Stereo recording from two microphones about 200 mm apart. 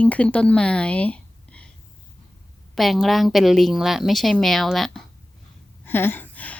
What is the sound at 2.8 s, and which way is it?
A woman's voice, centre (ahead or behind).